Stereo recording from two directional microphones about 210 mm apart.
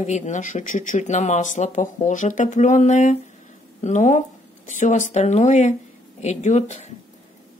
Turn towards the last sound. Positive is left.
turn(degrees=35)  # may be behind; listen again after turning